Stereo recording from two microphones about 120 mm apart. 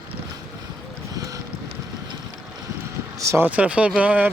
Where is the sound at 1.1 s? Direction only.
30° right (ahead or behind).